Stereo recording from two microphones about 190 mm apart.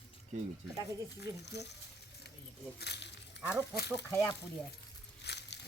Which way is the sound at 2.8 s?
60° left (ahead or behind).